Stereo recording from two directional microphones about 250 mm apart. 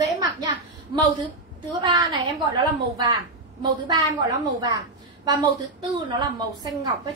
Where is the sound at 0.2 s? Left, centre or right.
Centre.